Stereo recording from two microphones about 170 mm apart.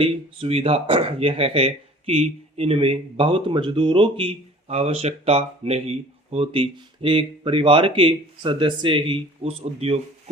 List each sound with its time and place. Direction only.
0.0 s speech: 35° right (ahead or behind)